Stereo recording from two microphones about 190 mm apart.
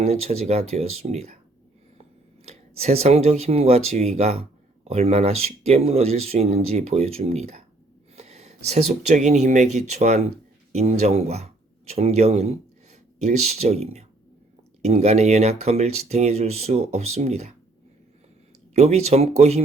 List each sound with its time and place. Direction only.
0.0 s speech: 35° right (ahead or behind)
18.7 s speech: 35° right (ahead or behind)